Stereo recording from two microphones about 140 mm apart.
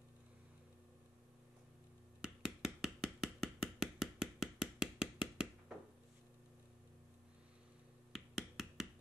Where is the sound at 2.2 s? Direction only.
5° right (ahead or behind).